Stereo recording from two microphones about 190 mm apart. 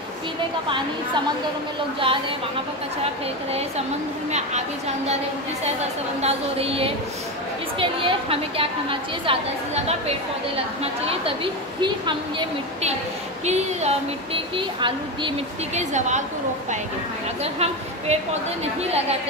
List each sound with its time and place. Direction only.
4.3 s a woman's voice: 35° right (ahead or behind)
13.5 s speech: 35° right (ahead or behind)
15.8 s speech: 40° right (ahead or behind)
17.4 s a woman's voice: 35° right (ahead or behind)